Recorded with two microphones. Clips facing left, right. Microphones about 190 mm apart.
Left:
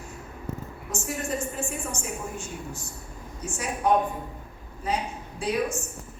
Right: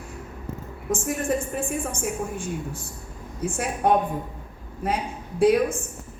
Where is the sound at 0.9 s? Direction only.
55° right (ahead or behind).